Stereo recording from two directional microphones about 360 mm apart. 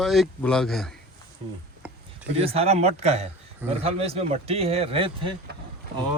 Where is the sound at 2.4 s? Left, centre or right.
Centre.